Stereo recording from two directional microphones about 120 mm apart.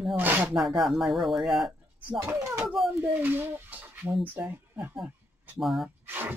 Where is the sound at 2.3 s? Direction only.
15° right (ahead or behind).